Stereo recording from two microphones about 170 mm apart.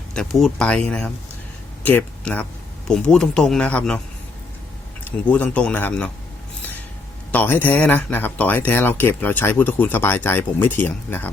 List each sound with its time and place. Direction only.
0.1 s speech: centre (ahead or behind)
5.0 s speech: 10° left (ahead or behind)
7.3 s speech: 10° left (ahead or behind)